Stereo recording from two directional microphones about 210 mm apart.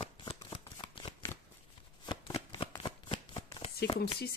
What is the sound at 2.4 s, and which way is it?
Shuffling cards, 25° left (ahead or behind).